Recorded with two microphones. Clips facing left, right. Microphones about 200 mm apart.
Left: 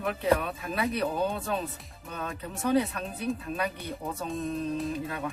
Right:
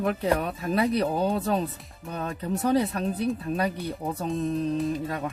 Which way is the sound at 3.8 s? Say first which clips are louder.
Right 5 dB; centre (ahead or behind).